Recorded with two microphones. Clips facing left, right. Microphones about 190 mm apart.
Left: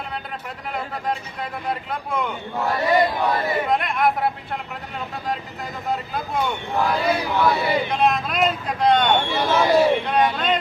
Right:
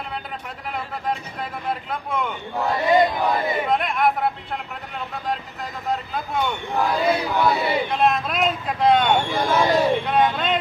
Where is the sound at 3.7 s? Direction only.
Centre (ahead or behind).